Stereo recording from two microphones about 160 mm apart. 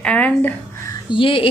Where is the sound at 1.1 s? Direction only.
35° left (ahead or behind).